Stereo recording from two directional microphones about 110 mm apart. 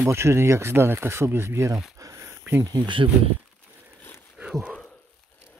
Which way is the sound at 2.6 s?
45° right (ahead or behind).